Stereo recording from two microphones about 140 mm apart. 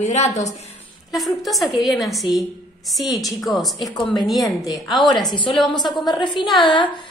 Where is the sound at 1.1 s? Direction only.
Centre (ahead or behind).